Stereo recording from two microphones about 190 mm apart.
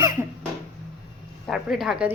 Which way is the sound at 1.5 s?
5° right (ahead or behind).